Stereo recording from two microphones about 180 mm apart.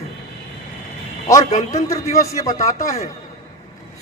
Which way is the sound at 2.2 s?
15° left (ahead or behind).